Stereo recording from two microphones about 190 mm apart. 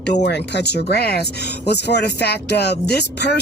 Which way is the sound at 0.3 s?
60° left (ahead or behind).